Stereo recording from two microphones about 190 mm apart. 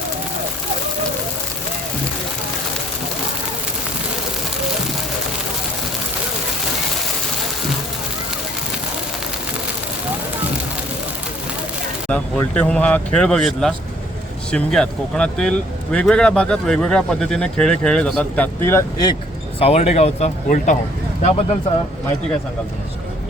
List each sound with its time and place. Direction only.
12.0 s speech: 10° left (ahead or behind)
19.5 s speech: 30° left (ahead or behind)